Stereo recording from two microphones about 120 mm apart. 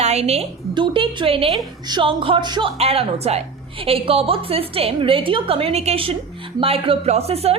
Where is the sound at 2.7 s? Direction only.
55° right (ahead or behind).